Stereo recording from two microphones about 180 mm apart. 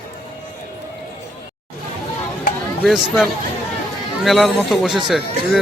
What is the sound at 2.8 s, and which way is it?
Speech, centre (ahead or behind).